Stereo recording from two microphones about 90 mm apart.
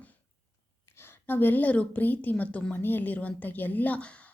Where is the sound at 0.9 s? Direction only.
25° left (ahead or behind).